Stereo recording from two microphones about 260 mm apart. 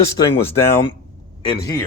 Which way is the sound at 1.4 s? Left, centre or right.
Centre.